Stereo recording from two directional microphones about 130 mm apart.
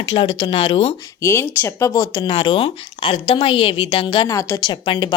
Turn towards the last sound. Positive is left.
turn(degrees=35)  # may be behind; listen again after turning